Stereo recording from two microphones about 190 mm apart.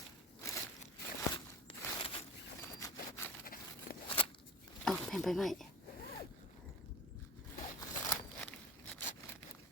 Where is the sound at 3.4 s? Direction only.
50° left (ahead or behind).